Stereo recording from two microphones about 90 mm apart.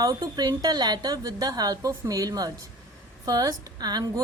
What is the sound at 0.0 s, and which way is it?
A woman's voice, 45° right (ahead or behind).